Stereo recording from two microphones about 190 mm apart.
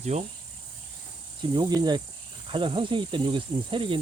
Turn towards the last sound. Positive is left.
turn(degrees=-25)  # may be behind; listen again after turning